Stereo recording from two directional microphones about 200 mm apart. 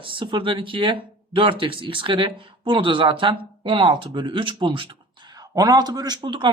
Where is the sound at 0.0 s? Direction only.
25° right (ahead or behind).